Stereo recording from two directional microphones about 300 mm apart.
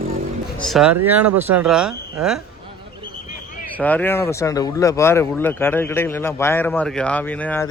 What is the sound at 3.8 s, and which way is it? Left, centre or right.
Speech, centre.